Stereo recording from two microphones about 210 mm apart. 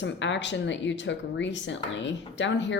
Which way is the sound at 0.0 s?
60° left (ahead or behind).